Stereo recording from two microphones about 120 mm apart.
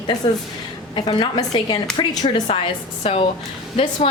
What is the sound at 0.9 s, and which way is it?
Speech, 40° left (ahead or behind).